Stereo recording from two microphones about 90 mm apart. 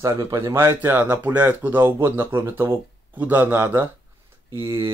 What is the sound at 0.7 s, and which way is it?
Speech, 20° right (ahead or behind).